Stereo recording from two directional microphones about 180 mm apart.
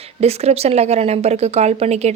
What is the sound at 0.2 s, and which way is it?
A woman's voice, 35° right (ahead or behind).